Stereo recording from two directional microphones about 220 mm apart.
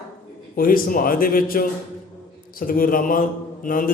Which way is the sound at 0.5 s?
40° left (ahead or behind).